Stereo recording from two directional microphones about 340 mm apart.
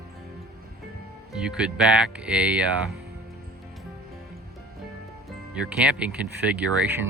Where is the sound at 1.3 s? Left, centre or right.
Centre.